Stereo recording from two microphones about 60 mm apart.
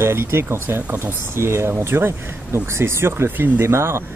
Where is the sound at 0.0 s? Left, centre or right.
Right.